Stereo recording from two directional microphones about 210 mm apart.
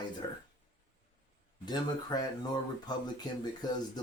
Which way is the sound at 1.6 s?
20° left (ahead or behind).